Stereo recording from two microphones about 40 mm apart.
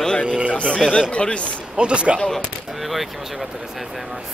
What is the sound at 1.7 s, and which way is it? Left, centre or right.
Music, right.